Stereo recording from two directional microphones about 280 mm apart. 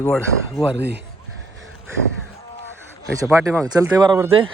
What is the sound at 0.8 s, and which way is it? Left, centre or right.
Speech, right.